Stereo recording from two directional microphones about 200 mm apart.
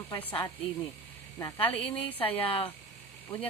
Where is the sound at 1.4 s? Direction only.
20° left (ahead or behind).